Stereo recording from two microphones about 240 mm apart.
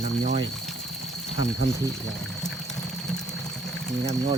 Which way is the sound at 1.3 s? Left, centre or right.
Left.